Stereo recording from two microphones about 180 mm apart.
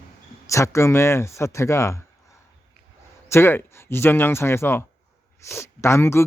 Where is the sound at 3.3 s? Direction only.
15° left (ahead or behind).